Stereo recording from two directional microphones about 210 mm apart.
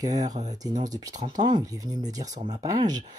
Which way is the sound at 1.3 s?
20° right (ahead or behind).